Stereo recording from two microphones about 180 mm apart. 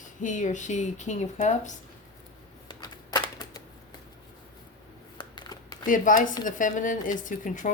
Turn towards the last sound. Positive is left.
turn(degrees=45)  # may be behind; listen again after turning